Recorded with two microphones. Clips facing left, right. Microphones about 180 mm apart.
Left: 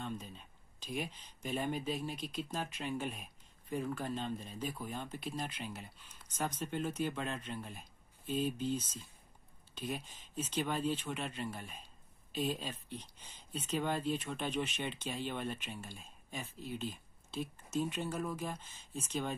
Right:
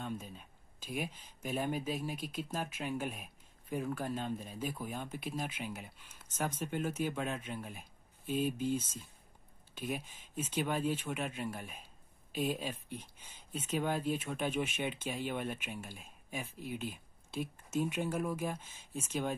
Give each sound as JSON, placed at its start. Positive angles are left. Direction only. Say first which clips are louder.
{"t": 0.0, "sound": "a sound", "louder": "right 1 dB", "side_deg": -5}
{"t": 1.4, "sound": "speech", "louder": "right 1 dB", "side_deg": -5}
{"t": 8.7, "sound": "speech", "louder": "right 2 dB", "side_deg": -50}
{"t": 9.8, "sound": "speech", "louder": "right 2 dB", "side_deg": -10}